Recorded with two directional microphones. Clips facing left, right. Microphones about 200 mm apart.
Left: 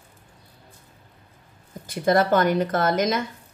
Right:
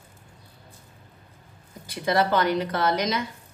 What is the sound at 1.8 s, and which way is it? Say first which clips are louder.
Speech: left 3 dB; 50° left (ahead or behind).